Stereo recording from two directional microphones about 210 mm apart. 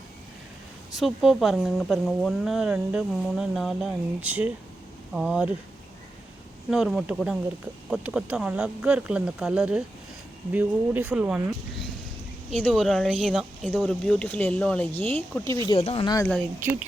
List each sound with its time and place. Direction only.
0.9 s speech: centre (ahead or behind)
6.7 s speech: centre (ahead or behind)
15.7 s speech: 25° left (ahead or behind)